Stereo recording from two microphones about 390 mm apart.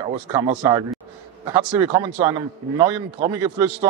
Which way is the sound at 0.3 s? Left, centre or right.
Centre.